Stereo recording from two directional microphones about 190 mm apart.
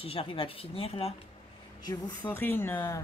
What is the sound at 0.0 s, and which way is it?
Speech, 30° left (ahead or behind).